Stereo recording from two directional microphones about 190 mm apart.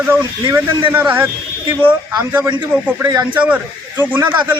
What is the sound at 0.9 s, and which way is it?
Speech, 10° right (ahead or behind).